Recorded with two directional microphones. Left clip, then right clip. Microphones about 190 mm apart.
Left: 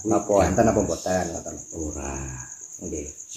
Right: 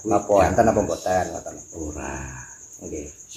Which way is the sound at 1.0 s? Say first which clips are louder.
Right 3 dB; 20° left (ahead or behind).